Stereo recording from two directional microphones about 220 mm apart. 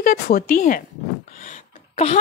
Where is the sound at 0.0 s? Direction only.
45° left (ahead or behind).